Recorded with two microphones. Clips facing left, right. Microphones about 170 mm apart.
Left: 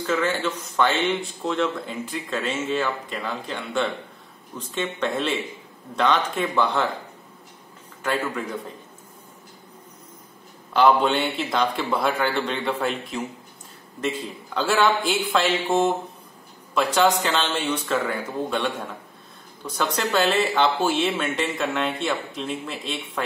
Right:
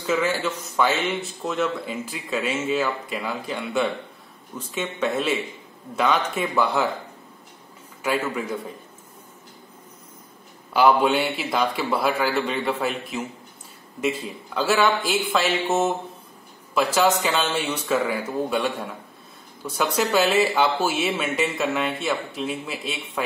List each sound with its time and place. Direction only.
0.0 s a man's voice: 10° right (ahead or behind)
8.0 s speech: 10° right (ahead or behind)
10.7 s a man's voice: 10° right (ahead or behind)
16.7 s speech: 5° right (ahead or behind)